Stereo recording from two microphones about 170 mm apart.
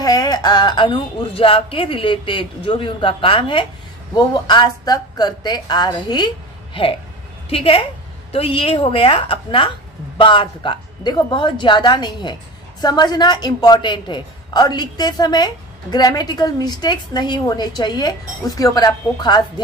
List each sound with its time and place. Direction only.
0.0 s a woman's voice: 25° left (ahead or behind)